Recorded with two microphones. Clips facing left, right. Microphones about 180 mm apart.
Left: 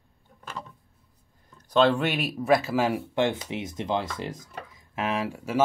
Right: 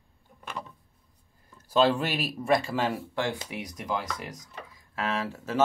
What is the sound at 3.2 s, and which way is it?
Speech, 20° left (ahead or behind).